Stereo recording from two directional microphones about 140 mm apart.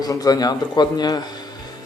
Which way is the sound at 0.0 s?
25° left (ahead or behind).